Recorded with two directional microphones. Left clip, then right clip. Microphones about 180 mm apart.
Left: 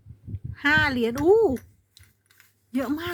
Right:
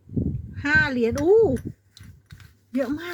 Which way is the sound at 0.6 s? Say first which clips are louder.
Right 1 dB; 25° left (ahead or behind).